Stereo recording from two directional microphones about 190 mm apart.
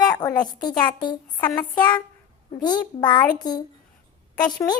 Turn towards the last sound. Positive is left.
turn(degrees=20)  # may be behind; listen again after turning